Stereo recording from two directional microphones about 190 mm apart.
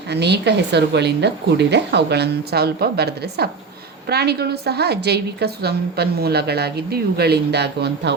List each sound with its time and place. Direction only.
0.1 s a woman's voice: 60° right (ahead or behind)